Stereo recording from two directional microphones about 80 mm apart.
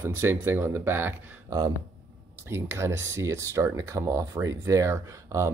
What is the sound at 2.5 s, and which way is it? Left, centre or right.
Speech, right.